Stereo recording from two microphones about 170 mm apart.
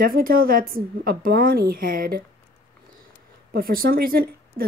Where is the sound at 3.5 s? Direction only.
60° right (ahead or behind).